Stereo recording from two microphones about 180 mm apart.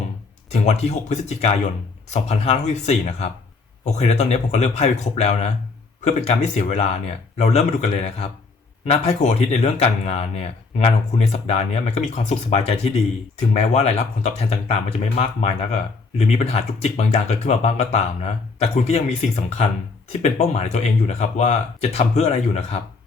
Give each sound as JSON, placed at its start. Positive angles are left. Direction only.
{"t": 0.5, "sound": "speech", "side_deg": 40}
{"t": 20.2, "sound": "speech", "side_deg": 40}